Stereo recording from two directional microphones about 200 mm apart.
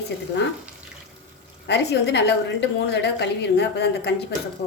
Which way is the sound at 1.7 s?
60° left (ahead or behind).